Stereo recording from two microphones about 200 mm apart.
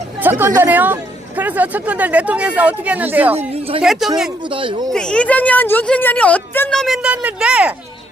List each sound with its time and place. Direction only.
0.2 s speech: 10° right (ahead or behind)
3.3 s speech: 30° right (ahead or behind)
3.8 s a woman's voice: centre (ahead or behind)
4.4 s speech: 25° right (ahead or behind)
4.9 s a woman's voice: 5° left (ahead or behind)